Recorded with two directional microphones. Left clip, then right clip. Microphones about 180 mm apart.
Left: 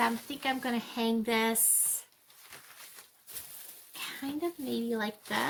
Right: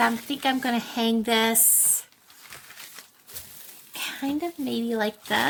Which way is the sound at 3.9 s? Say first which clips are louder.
Right 8 dB; 45° right (ahead or behind).